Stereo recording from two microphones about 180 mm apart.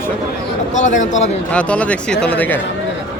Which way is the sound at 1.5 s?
5° left (ahead or behind).